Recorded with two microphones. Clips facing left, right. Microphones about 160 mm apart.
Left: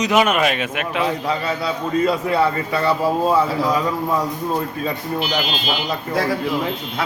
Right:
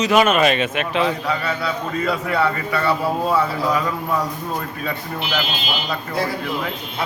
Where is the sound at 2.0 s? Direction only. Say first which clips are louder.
Left 2 dB; 25° left (ahead or behind).